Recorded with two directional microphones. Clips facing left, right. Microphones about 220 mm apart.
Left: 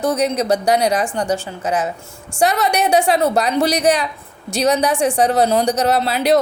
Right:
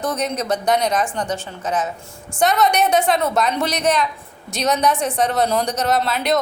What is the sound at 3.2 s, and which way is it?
A woman's voice, 30° left (ahead or behind).